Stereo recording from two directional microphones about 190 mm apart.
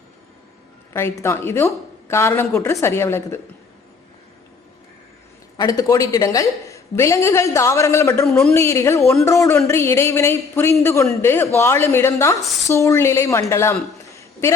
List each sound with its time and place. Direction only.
0.9 s a man's voice: 15° left (ahead or behind)
5.5 s a man's voice: 20° left (ahead or behind)
8.2 s a man's voice: 5° left (ahead or behind)
12.4 s speech: centre (ahead or behind)
12.6 s a man's voice: 15° left (ahead or behind)